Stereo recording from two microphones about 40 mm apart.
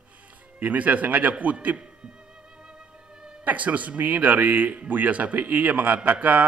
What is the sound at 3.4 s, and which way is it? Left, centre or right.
A man's voice, right.